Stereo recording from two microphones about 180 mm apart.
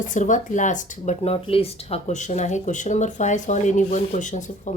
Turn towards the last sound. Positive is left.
turn(degrees=45)  # may be behind; listen again after turning